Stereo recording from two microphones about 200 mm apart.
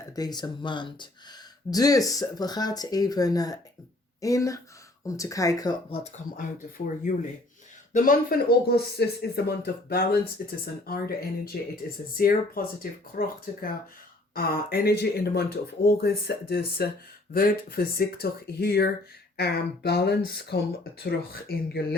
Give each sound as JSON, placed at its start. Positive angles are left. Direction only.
{"t": 0.0, "sound": "speech", "side_deg": 20}